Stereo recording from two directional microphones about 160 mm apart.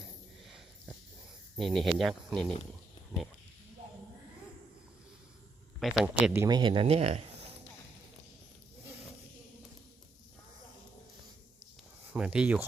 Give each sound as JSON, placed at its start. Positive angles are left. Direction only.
{"t": 1.5, "sound": "speech", "side_deg": 0}
{"t": 5.8, "sound": "speech", "side_deg": -5}
{"t": 6.4, "sound": "speech", "side_deg": -25}
{"t": 12.1, "sound": "speech", "side_deg": -5}